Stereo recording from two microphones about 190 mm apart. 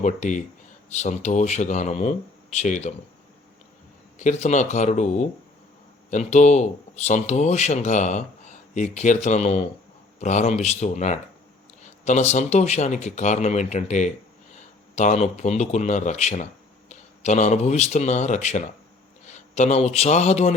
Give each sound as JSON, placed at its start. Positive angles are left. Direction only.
{"t": 0.0, "sound": "speech", "side_deg": 40}
{"t": 4.2, "sound": "a man's voice", "side_deg": 40}